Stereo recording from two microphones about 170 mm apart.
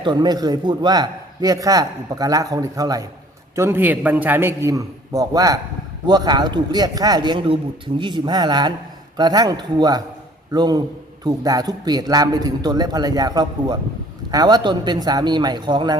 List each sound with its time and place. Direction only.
0.0 s a man's voice: 25° right (ahead or behind)